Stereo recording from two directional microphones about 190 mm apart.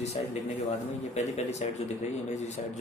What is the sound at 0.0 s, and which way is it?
Speech, 35° left (ahead or behind).